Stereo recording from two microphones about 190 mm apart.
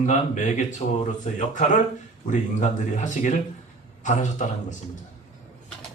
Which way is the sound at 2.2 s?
40° left (ahead or behind).